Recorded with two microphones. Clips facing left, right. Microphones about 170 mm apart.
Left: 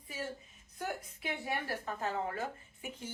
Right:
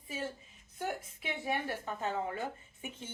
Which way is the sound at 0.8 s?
25° right (ahead or behind).